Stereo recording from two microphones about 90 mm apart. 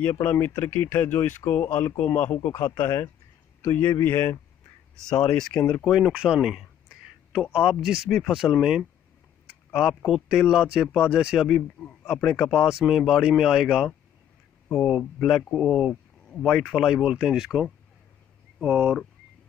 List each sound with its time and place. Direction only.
0.0 s speech: 20° left (ahead or behind)
5.0 s speech: 10° left (ahead or behind)
5.9 s speech: 10° right (ahead or behind)
14.7 s speech: 15° left (ahead or behind)
15.1 s speech: centre (ahead or behind)